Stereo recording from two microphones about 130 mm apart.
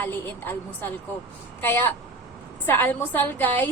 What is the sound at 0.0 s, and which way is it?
A woman's voice, 15° left (ahead or behind).